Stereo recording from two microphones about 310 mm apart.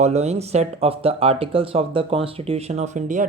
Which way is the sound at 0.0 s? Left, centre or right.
Right.